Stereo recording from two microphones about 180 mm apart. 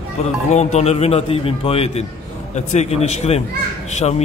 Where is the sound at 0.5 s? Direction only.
35° left (ahead or behind).